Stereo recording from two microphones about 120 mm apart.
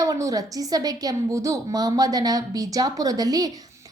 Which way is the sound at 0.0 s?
30° right (ahead or behind).